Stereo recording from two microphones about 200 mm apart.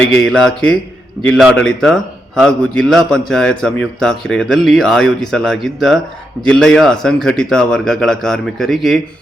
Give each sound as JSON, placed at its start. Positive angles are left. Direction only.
{"t": 0.0, "sound": "a man's voice", "side_deg": 5}